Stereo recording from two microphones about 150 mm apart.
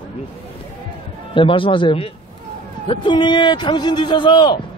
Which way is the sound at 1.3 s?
35° left (ahead or behind).